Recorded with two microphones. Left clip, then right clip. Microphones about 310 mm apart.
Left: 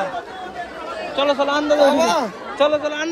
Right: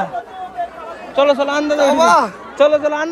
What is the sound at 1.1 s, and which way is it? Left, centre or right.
A man's voice, centre.